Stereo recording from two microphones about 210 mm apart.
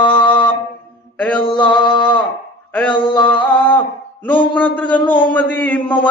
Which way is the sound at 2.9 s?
25° left (ahead or behind).